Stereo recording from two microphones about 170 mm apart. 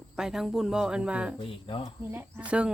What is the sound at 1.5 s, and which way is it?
Speech, 35° left (ahead or behind).